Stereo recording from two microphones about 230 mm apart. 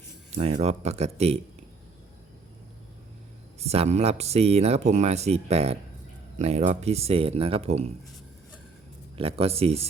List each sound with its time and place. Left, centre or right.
0.3 s speech: right
3.6 s speech: right
9.1 s speech: right